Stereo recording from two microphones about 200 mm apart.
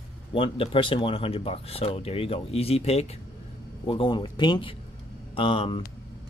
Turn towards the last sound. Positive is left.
turn(degrees=25)  # may be behind; listen again after turning